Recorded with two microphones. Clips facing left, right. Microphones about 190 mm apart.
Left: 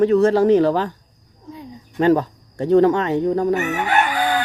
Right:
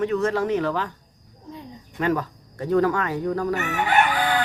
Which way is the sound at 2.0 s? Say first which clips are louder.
Left 8 dB; 30° left (ahead or behind).